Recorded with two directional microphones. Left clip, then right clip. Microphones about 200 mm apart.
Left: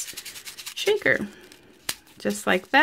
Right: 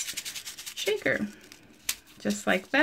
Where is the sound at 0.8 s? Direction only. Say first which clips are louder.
Left 6 dB; 45° left (ahead or behind).